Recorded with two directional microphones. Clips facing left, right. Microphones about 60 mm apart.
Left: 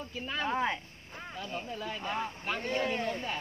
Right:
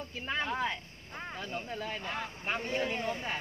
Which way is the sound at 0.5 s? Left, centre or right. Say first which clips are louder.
Left 5 dB; left.